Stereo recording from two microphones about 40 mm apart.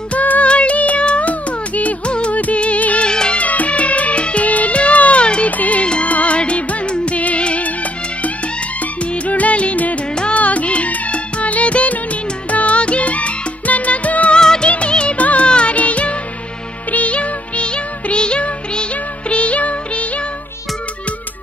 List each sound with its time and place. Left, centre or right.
0.1 s music: left
2.1 s music of bollywood: left
3.1 s music: left
3.3 s music: left
9.1 s music: left
14.3 s music: centre
14.7 s music of bollywood: left
15.1 s music: left